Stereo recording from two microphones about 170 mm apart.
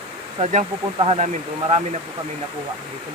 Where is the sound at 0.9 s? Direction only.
35° right (ahead or behind).